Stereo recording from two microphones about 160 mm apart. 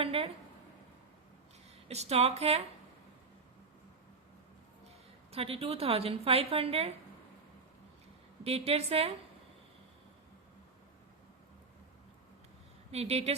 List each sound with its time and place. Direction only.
0.0 s a sound: 35° right (ahead or behind)
1.9 s a woman's voice: 40° right (ahead or behind)
5.3 s a woman's voice: 40° right (ahead or behind)
8.4 s a woman's voice: 40° right (ahead or behind)
12.9 s a woman's voice: 40° right (ahead or behind)